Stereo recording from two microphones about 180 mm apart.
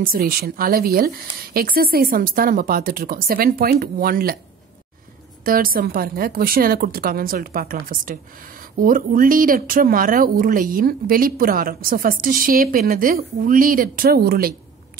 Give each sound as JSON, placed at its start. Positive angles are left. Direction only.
{"t": 0.0, "sound": "a woman's voice", "side_deg": -55}
{"t": 5.4, "sound": "a woman's voice", "side_deg": -55}